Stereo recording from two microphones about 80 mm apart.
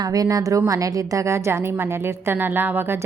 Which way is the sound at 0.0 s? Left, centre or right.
Right.